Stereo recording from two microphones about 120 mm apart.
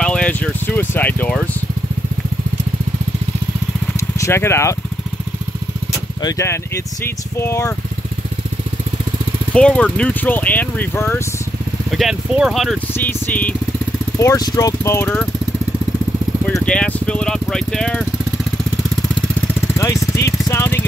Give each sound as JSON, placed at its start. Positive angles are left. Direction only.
{"t": 0.0, "sound": "speech", "side_deg": 10}
{"t": 4.2, "sound": "speech", "side_deg": 20}
{"t": 6.2, "sound": "speech", "side_deg": 25}
{"t": 9.5, "sound": "speech", "side_deg": 10}
{"t": 11.9, "sound": "speech", "side_deg": 0}
{"t": 12.9, "sound": "speech", "side_deg": 15}
{"t": 14.1, "sound": "speech", "side_deg": 25}
{"t": 16.6, "sound": "speech", "side_deg": 10}
{"t": 19.4, "sound": "vehicle", "side_deg": 25}